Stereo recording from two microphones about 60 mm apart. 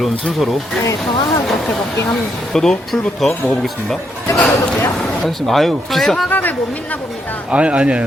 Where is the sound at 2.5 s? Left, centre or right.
Centre.